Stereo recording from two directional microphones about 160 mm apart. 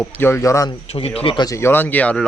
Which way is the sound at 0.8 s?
40° left (ahead or behind).